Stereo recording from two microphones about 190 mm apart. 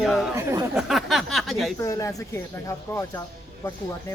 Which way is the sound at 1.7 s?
15° left (ahead or behind).